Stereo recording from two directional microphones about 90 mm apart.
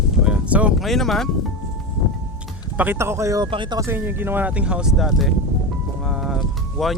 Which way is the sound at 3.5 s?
65° right (ahead or behind).